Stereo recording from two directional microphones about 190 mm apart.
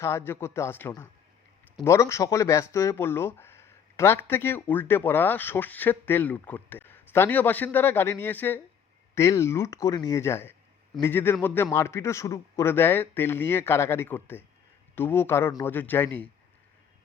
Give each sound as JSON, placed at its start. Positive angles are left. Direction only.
{"t": 0.0, "sound": "speech", "side_deg": 15}